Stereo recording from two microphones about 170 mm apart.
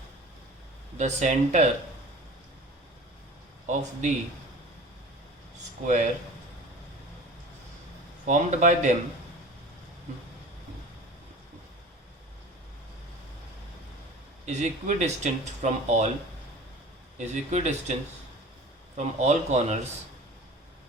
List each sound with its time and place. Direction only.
0.9 s speech: 45° right (ahead or behind)
3.7 s speech: 45° right (ahead or behind)
5.8 s speech: 45° right (ahead or behind)
8.3 s speech: 45° right (ahead or behind)
14.4 s speech: 45° right (ahead or behind)
17.2 s speech: 45° right (ahead or behind)
18.9 s speech: 45° right (ahead or behind)